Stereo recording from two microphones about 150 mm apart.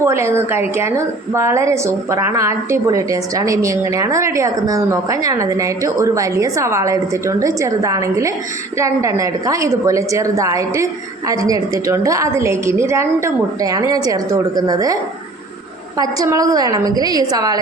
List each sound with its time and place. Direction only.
0.0 s a woman's voice: 20° right (ahead or behind)
16.0 s a woman's voice: 20° right (ahead or behind)